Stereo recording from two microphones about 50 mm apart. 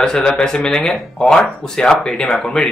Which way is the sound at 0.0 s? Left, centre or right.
Centre.